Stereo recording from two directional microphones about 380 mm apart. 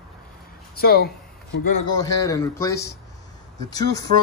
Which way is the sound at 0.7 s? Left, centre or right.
Left.